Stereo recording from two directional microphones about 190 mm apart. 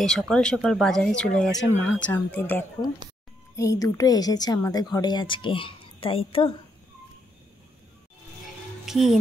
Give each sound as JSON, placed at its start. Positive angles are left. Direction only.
{"t": 0.0, "sound": "a woman's voice", "side_deg": 5}
{"t": 8.8, "sound": "speech", "side_deg": 0}